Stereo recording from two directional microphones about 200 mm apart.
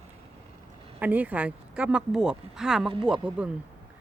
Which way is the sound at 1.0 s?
10° right (ahead or behind).